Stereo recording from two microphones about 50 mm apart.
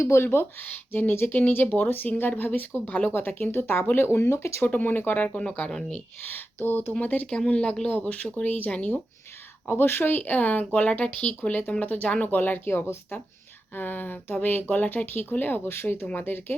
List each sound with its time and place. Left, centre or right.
0.0 s speech: left
0.3 s speech: left
1.4 s speech: left
3.1 s speech: left
4.6 s speech: left
5.4 s speech: left
6.2 s speech: left
7.0 s speech: left
7.3 s speech: centre
12.4 s speech: left
13.7 s speech: left